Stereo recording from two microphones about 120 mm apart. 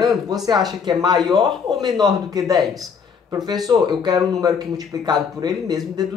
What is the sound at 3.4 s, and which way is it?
A man's voice, 35° right (ahead or behind).